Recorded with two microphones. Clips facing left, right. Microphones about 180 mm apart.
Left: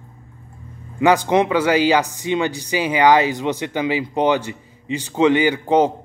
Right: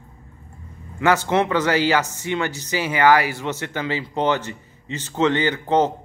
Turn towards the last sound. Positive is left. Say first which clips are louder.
# left 3 dB
turn(degrees=10)  # may be behind; listen again after turning